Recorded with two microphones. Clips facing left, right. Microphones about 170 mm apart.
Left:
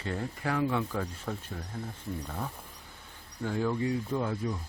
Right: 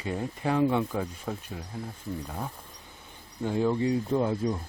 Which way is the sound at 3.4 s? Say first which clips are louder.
Right 4 dB; 20° right (ahead or behind).